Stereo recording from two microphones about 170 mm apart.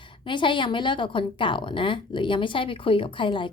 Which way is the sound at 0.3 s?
30° left (ahead or behind).